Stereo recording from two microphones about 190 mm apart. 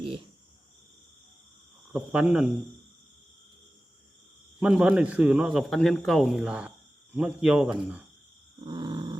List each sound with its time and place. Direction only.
1.9 s speech: 10° right (ahead or behind)
4.6 s speech: 5° right (ahead or behind)
8.6 s dog: 25° right (ahead or behind)